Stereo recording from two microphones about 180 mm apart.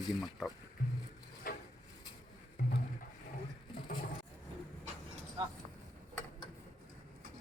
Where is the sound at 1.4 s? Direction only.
50° left (ahead or behind).